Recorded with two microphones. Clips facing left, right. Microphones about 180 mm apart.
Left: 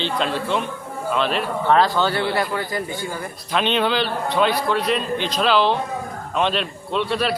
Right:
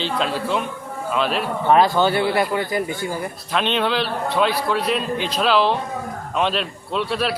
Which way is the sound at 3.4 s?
Centre (ahead or behind).